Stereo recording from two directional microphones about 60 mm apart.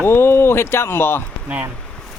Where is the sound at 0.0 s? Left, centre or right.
Left.